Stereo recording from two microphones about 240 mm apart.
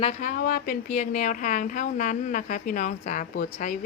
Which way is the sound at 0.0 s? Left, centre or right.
Left.